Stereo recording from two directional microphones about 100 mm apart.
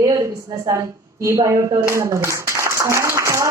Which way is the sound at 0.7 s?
30° right (ahead or behind).